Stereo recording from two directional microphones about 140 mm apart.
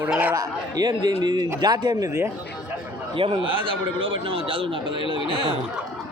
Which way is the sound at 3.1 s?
40° right (ahead or behind).